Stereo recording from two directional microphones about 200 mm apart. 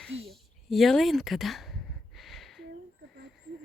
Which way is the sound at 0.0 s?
Centre (ahead or behind).